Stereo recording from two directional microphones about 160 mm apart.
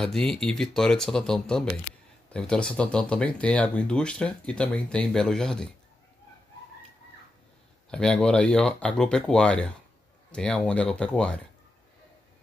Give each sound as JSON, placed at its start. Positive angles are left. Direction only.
{"t": 0.0, "sound": "speech", "side_deg": 5}
{"t": 7.9, "sound": "speech", "side_deg": 5}